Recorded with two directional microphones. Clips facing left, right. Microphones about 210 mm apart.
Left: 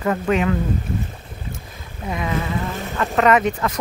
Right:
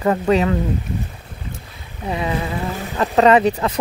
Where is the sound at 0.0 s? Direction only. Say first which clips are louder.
Right 3 dB; 30° right (ahead or behind).